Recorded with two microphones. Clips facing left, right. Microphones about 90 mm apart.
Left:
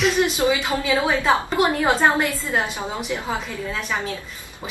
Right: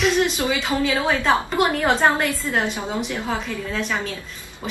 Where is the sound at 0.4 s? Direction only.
15° left (ahead or behind).